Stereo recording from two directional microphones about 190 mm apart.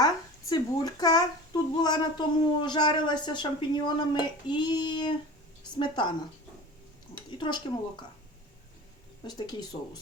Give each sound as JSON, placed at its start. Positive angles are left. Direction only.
{"t": 0.0, "sound": "speech", "side_deg": 20}
{"t": 7.3, "sound": "a woman's voice", "side_deg": 25}
{"t": 9.2, "sound": "speech", "side_deg": 20}